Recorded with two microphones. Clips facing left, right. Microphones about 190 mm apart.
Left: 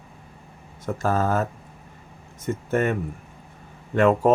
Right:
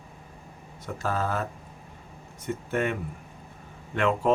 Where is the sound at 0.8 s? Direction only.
45° left (ahead or behind).